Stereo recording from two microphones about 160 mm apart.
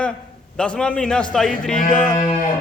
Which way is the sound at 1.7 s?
55° left (ahead or behind).